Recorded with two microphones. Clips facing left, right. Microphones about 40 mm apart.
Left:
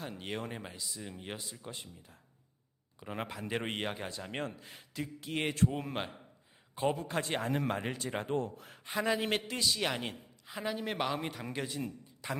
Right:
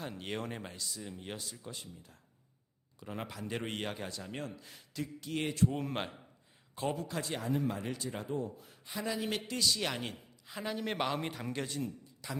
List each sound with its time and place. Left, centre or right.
0.0 s speech: centre
0.9 s a man's voice: centre
4.3 s speech: left
4.6 s a man's voice: left
5.6 s a man's voice: centre
6.7 s a man's voice: left
8.4 s a man's voice: left
9.5 s a man's voice: left
12.2 s speech: left